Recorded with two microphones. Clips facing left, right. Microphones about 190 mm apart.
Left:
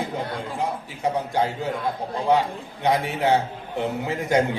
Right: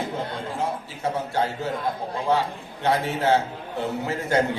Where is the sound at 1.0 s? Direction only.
15° left (ahead or behind).